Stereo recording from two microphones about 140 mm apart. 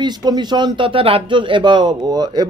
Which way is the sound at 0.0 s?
30° right (ahead or behind).